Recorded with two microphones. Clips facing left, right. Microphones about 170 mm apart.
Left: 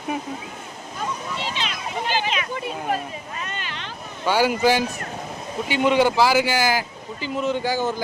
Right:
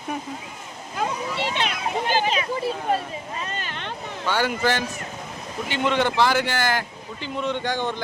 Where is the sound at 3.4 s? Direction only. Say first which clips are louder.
Right 1 dB; 45° right (ahead or behind).